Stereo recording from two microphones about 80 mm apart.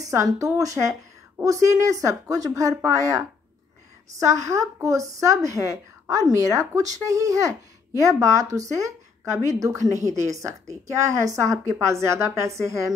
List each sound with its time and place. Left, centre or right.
0.0 s a woman's voice: right